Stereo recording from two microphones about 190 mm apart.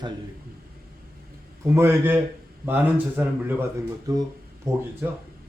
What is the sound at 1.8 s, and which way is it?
Speech, 15° right (ahead or behind).